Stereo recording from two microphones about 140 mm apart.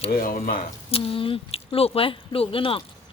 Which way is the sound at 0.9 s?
40° left (ahead or behind).